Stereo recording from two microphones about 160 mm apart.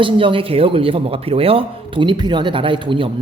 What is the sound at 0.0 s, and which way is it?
Speech, 30° right (ahead or behind).